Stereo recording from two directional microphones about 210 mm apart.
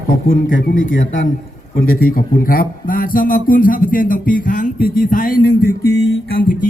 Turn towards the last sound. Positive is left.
turn(degrees=45)  # may be behind; listen again after turning